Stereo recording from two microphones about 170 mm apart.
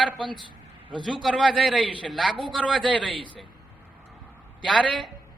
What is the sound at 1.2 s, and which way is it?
A woman's voice, centre (ahead or behind).